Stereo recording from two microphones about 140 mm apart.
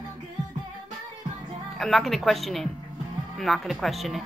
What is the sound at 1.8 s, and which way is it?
Speech, centre (ahead or behind).